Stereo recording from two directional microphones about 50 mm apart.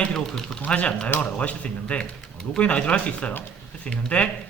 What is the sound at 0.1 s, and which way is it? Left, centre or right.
Speech, centre.